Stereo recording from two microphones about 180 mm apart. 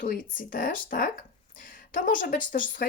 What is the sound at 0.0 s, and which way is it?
Speech, 50° left (ahead or behind).